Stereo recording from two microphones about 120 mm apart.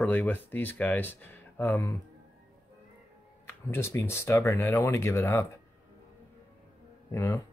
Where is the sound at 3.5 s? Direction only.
20° left (ahead or behind).